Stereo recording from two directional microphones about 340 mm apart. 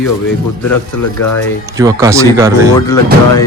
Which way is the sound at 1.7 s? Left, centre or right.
Centre.